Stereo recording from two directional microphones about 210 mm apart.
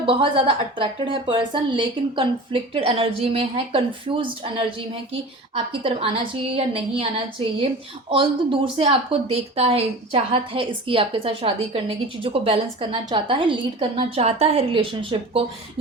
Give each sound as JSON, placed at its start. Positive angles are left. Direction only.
{"t": 0.0, "sound": "a woman's voice", "side_deg": -25}